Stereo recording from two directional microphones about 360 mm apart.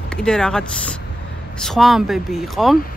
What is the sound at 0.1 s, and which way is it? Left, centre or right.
Speech, centre.